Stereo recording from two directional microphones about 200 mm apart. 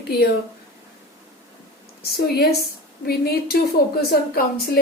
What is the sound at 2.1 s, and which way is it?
Speech, 50° left (ahead or behind).